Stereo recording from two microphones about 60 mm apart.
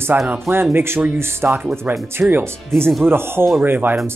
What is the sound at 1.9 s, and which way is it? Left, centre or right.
Speech, right.